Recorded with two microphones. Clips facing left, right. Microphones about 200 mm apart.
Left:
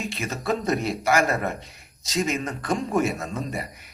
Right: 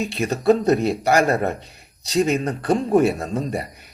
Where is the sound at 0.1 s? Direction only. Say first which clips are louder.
Right 9 dB; 35° right (ahead or behind).